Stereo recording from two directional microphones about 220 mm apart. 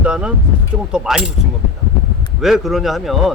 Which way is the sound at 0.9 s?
5° right (ahead or behind).